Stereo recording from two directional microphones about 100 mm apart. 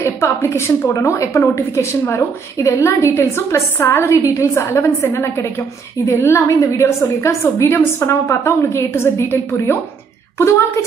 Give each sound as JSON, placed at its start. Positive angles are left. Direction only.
{"t": 0.0, "sound": "a woman's voice", "side_deg": 25}